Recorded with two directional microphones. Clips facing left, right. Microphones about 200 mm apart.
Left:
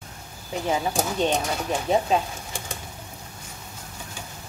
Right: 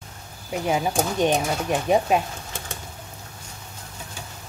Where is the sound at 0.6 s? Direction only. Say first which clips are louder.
Right 2 dB; 15° right (ahead or behind).